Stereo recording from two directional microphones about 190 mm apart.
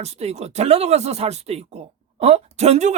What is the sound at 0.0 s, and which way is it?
Speech, 35° right (ahead or behind).